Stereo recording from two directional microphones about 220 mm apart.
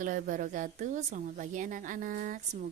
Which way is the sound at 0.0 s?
35° right (ahead or behind).